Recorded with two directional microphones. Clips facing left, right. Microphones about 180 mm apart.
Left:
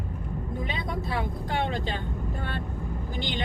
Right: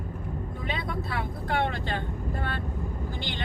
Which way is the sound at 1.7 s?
20° left (ahead or behind).